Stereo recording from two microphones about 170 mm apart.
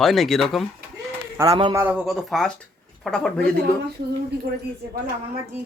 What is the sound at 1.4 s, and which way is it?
Speech, 35° right (ahead or behind).